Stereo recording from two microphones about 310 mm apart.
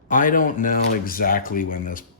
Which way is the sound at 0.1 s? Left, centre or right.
Left.